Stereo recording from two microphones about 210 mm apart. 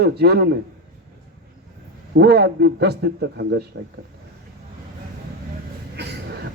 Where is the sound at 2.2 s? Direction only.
50° right (ahead or behind).